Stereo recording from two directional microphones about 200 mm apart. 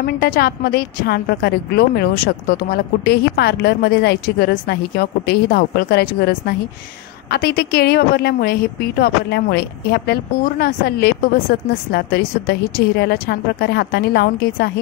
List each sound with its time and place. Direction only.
0.0 s a woman's voice: 50° left (ahead or behind)